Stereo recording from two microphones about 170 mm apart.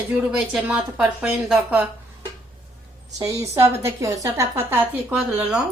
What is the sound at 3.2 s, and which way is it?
A woman's voice, 20° right (ahead or behind).